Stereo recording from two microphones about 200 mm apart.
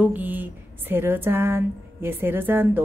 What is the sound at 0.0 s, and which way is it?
A woman's voice, 10° right (ahead or behind).